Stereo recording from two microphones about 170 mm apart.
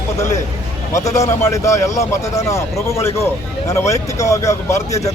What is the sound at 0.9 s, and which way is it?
Speech, 20° left (ahead or behind).